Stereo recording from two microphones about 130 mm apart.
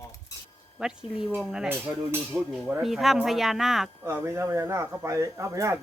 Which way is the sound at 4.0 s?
20° right (ahead or behind).